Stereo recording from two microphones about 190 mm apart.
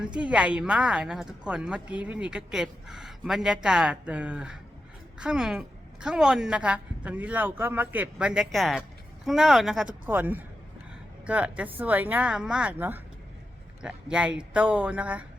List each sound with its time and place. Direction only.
0.0 s speech: 5° right (ahead or behind)